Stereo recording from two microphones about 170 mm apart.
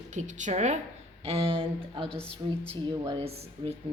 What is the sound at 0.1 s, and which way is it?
A woman's voice, 45° right (ahead or behind).